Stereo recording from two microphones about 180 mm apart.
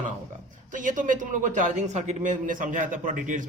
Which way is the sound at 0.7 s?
45° right (ahead or behind).